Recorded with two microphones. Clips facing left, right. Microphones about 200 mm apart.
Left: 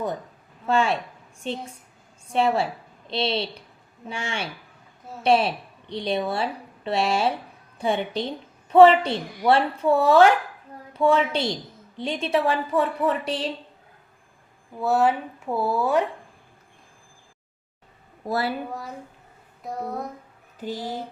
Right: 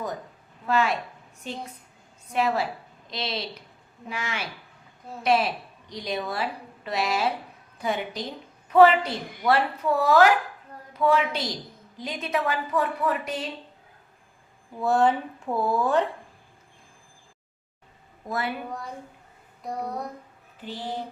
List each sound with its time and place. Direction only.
0.7 s a woman's voice: 30° left (ahead or behind)
14.8 s speech: 5° left (ahead or behind)
18.3 s a woman's voice: 35° left (ahead or behind)
18.7 s a woman's voice: 5° left (ahead or behind)
20.6 s speech: 40° left (ahead or behind)